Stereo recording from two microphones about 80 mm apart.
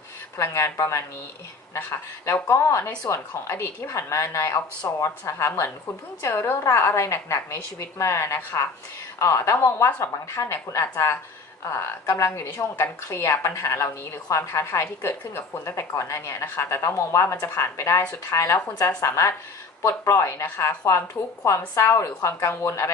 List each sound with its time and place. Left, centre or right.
0.4 s a woman's voice: left
1.8 s a woman's voice: left
6.2 s a woman's voice: left